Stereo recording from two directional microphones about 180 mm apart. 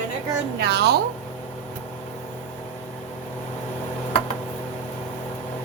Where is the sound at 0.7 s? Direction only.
65° right (ahead or behind).